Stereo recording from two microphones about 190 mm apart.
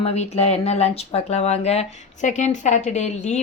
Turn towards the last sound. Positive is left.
turn(degrees=35)  # may be behind; listen again after turning